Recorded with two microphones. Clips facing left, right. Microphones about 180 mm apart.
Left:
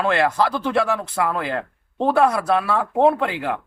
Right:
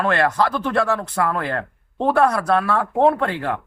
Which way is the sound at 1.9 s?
5° left (ahead or behind).